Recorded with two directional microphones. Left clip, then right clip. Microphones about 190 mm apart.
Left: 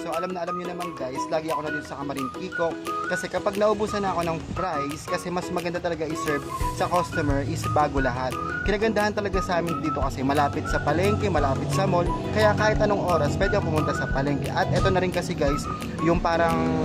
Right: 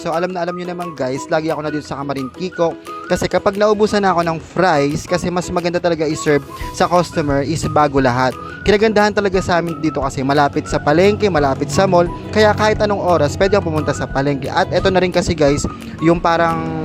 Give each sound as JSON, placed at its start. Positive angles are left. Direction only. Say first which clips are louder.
{"t": 0.1, "sound": "speech", "louder": "right 10 dB", "side_deg": -40}